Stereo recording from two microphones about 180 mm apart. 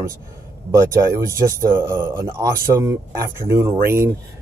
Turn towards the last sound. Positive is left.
turn(degrees=-15)  # may be behind; listen again after turning